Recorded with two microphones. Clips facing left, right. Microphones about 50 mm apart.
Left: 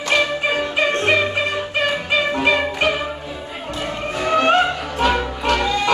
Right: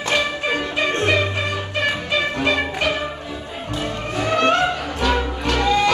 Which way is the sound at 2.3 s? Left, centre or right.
Left.